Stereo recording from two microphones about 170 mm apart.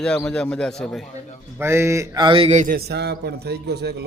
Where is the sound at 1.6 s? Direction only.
15° right (ahead or behind); by 2.6 s 35° right (ahead or behind).